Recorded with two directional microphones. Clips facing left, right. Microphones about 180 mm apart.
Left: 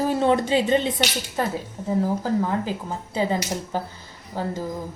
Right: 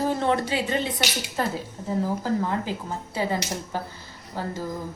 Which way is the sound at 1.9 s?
15° left (ahead or behind).